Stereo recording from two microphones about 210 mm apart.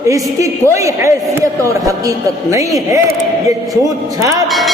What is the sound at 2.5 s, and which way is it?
A man's voice, 15° right (ahead or behind).